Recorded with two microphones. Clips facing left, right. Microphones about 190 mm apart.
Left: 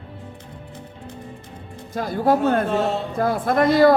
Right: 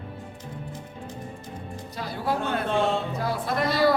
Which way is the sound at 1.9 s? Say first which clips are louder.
Left 9 dB; 50° left (ahead or behind).